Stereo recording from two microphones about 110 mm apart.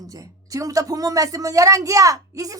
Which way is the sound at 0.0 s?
30° right (ahead or behind).